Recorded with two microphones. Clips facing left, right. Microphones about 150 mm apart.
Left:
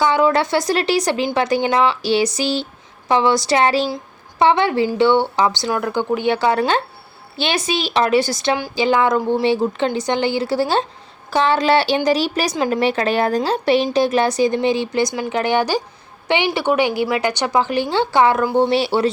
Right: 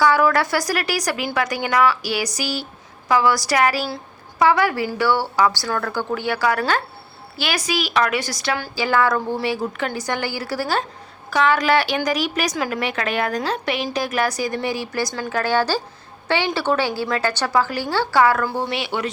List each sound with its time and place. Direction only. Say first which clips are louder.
0.0 s a woman's voice: left 1 dB; 20° left (ahead or behind)